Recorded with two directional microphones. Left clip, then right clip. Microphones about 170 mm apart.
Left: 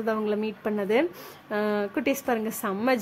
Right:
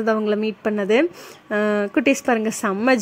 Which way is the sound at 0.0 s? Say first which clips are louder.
Right 7 dB; 30° right (ahead or behind).